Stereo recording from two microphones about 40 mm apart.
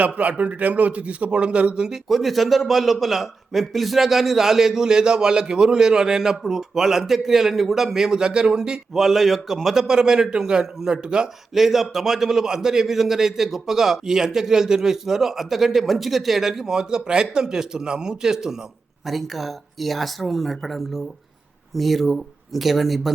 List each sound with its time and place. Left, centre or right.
0.2 s speech: right
1.7 s a man's voice: centre
2.0 s a man's voice: centre
9.0 s a man's voice: centre; by 11.3 s right
11.5 s a man's voice: centre
19.0 s speech: centre